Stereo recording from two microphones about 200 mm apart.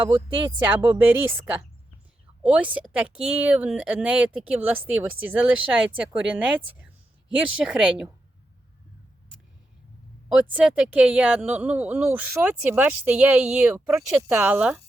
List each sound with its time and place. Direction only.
0.0 s speech: 25° right (ahead or behind)
0.6 s speech: 10° right (ahead or behind)
10.3 s speech: 5° right (ahead or behind)